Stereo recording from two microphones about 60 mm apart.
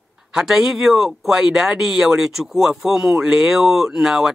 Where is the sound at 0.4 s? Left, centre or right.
Centre.